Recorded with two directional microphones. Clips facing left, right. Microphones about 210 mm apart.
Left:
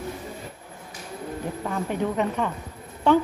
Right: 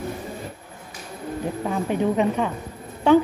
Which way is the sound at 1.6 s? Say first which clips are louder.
Right 4 dB; 20° right (ahead or behind).